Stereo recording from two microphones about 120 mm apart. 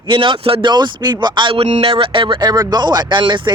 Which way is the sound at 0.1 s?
50° right (ahead or behind).